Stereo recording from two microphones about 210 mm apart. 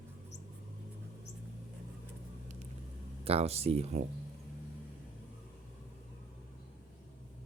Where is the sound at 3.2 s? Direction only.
30° right (ahead or behind).